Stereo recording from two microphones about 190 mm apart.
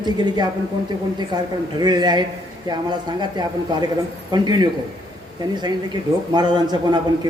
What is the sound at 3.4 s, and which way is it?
A man's voice, 25° right (ahead or behind).